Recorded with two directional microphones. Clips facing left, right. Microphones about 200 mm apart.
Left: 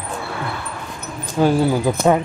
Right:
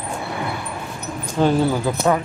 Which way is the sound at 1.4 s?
10° left (ahead or behind).